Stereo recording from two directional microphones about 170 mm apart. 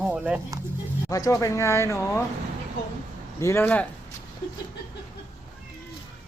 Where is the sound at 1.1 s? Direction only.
20° left (ahead or behind).